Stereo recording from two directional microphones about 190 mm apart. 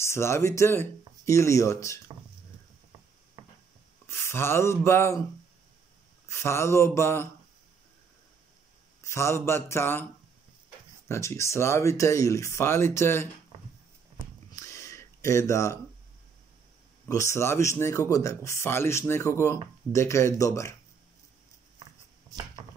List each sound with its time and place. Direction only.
0.0 s speech: 15° left (ahead or behind)
3.4 s a sound: 30° right (ahead or behind)
4.1 s speech: 15° left (ahead or behind)
6.2 s speech: 15° left (ahead or behind)
9.0 s speech: 15° left (ahead or behind)
11.1 s speech: 15° left (ahead or behind)
14.5 s a sound: 15° left (ahead or behind)
17.1 s speech: 15° left (ahead or behind)